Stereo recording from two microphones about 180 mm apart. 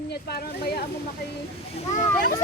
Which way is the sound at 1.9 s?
50° left (ahead or behind).